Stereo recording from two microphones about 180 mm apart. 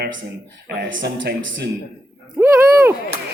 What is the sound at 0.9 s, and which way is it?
Speech, 75° right (ahead or behind).